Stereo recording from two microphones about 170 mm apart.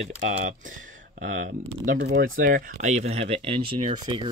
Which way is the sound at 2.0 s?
80° right.